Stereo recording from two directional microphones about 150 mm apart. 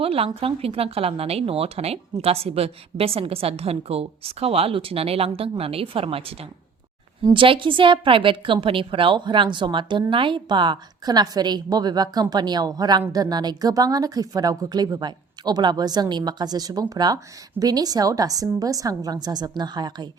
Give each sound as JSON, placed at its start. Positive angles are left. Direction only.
{"t": 0.0, "sound": "a woman's voice", "side_deg": -40}